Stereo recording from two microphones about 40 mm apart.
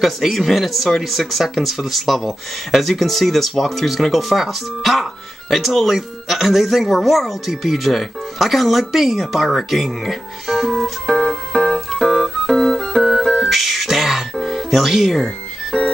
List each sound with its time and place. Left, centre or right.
0.0 s speech: centre
12.5 s music: centre
13.5 s music: centre
15.7 s ice cream truck: centre